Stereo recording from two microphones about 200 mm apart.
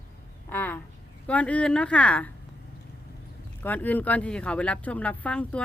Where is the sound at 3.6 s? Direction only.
10° left (ahead or behind).